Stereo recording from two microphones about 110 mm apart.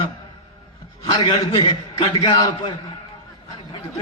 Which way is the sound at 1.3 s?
40° left (ahead or behind).